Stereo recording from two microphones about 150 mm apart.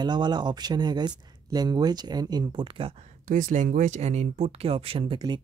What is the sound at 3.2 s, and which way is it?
Speech, 60° right (ahead or behind).